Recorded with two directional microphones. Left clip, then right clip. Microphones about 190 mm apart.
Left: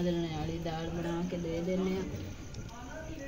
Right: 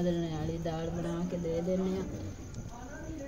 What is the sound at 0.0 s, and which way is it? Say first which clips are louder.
Speech: right 1 dB; 15° right (ahead or behind).